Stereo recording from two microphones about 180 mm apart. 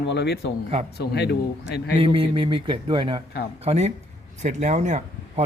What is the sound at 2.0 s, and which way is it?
A man's voice, 30° right (ahead or behind).